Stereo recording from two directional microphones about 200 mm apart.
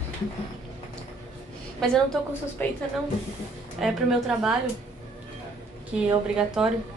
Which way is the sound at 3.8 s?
5° right (ahead or behind).